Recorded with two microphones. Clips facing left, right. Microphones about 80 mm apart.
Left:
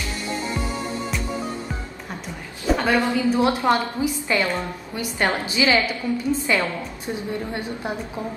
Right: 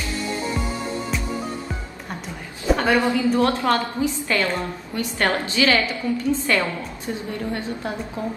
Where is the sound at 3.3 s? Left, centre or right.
Centre.